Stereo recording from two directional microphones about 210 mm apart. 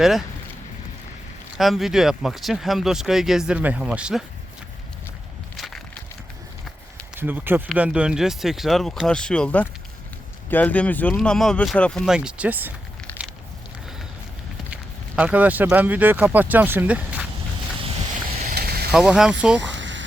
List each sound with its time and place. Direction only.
1.5 s speech: centre (ahead or behind)
5.5 s crushing: centre (ahead or behind)
7.2 s speech: 10° right (ahead or behind)
13.1 s a sound: 10° left (ahead or behind)
14.7 s speech: 5° right (ahead or behind)
17.8 s vehicle: 25° right (ahead or behind)
18.4 s a sound: 45° right (ahead or behind)
18.9 s speech: 5° right (ahead or behind)
19.5 s a sound: 60° right (ahead or behind)